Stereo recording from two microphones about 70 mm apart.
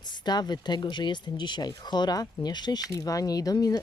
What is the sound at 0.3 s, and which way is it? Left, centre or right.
Speech, left.